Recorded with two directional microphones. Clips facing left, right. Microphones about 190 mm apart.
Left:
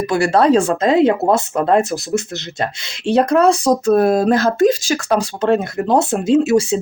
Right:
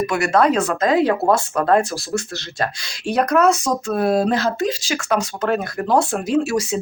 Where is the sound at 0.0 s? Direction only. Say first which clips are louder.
Left 3 dB; 30° left (ahead or behind).